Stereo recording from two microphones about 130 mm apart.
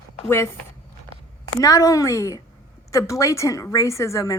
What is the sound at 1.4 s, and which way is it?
A woman's voice, 25° left (ahead or behind).